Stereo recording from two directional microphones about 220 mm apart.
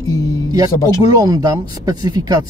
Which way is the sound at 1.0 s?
15° right (ahead or behind).